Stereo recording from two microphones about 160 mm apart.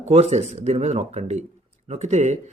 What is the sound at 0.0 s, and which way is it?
Speech, 45° right (ahead or behind).